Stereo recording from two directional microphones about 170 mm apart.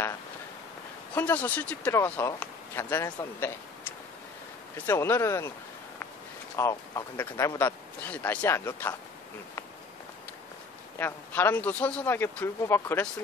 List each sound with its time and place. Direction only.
1.1 s speech: 10° left (ahead or behind)
4.7 s speech: 15° left (ahead or behind)
6.5 s speech: 20° left (ahead or behind)
11.0 s speech: 15° left (ahead or behind)